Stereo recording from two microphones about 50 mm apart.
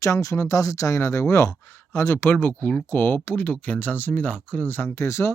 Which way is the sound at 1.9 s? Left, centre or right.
Left.